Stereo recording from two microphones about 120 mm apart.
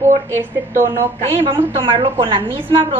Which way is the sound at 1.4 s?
45° right (ahead or behind).